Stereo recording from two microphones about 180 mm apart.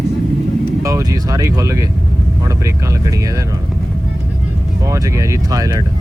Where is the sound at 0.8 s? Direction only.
20° right (ahead or behind).